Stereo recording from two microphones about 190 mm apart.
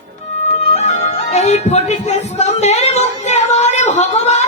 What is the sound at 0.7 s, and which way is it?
Music, 35° left (ahead or behind).